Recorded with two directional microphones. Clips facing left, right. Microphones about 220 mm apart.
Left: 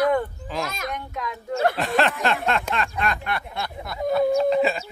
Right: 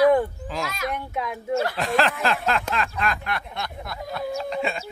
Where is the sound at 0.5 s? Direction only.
Centre (ahead or behind).